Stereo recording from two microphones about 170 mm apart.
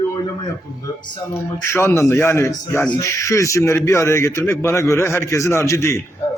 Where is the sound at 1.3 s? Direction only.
15° left (ahead or behind).